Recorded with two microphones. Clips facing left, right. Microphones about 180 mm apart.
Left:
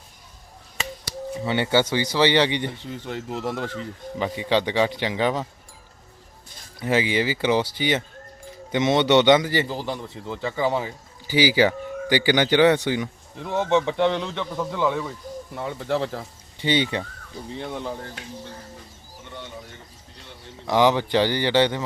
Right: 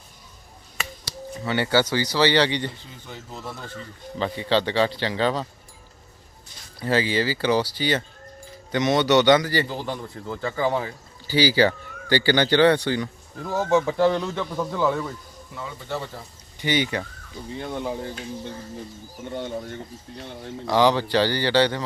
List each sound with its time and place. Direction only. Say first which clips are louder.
1.5 s speech: even; 20° left (ahead or behind)
2.8 s speech: left 9 dB; 70° left (ahead or behind); by 3.8 s 90° left
4.2 s speech: even; 15° left (ahead or behind)
6.7 s speech: even; 15° left (ahead or behind)
9.6 s a man's voice: left 1 dB; centre (ahead or behind)
11.3 s speech: even; 15° left (ahead or behind)
13.4 s a man's voice: even; centre (ahead or behind)
15.5 s speech: left 6 dB; 65° left (ahead or behind); by 16.2 s 90° left
16.6 s speech: left 1 dB; 25° left (ahead or behind)
17.6 s a man's voice: right 2 dB; 5° right (ahead or behind)
19.3 s speech: right 8 dB; 45° right (ahead or behind)
20.7 s speech: even; 20° left (ahead or behind)